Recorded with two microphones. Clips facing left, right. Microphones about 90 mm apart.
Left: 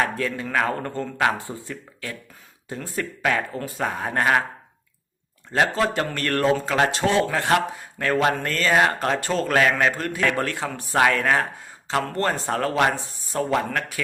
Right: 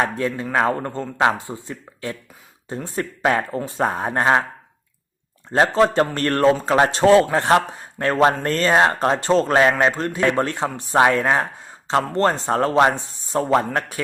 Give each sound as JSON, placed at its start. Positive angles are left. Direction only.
{"t": 0.0, "sound": "a man's voice", "side_deg": -25}
{"t": 5.5, "sound": "a man's voice", "side_deg": -30}
{"t": 13.4, "sound": "a man's voice", "side_deg": -35}